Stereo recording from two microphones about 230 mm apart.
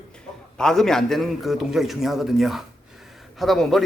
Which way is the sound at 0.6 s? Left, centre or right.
Centre.